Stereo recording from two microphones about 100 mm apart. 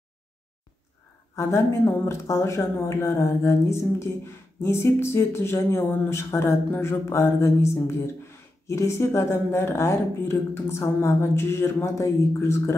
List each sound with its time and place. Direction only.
1.3 s speech: 30° left (ahead or behind)